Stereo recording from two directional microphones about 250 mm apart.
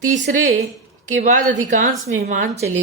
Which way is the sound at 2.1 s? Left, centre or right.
Right.